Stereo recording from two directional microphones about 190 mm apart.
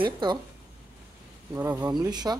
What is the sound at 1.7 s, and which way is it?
Speech, 20° right (ahead or behind).